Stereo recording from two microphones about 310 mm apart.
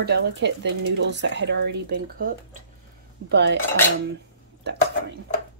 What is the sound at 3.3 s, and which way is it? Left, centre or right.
Speech, right.